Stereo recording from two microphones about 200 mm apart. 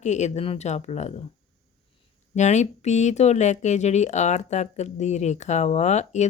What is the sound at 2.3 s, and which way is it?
Speech, 35° left (ahead or behind).